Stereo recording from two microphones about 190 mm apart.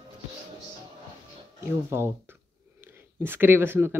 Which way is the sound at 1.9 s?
15° right (ahead or behind).